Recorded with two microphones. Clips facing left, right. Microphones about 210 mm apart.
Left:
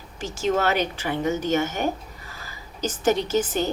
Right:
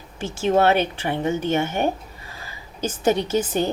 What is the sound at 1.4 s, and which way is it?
Speech, 55° right (ahead or behind).